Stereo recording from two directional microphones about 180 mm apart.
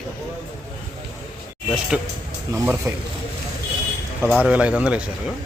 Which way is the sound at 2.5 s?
10° right (ahead or behind).